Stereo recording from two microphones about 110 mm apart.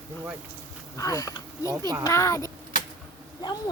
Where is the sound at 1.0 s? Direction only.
30° left (ahead or behind).